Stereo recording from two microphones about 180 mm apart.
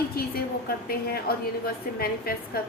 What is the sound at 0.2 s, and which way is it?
A woman's voice, 55° left (ahead or behind).